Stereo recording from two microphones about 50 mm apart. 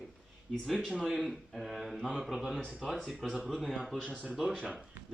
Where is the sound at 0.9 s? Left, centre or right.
Centre.